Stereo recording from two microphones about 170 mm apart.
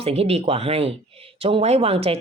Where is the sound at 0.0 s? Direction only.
35° right (ahead or behind).